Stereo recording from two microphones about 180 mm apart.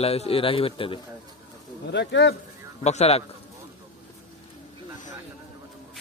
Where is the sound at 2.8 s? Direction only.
35° left (ahead or behind).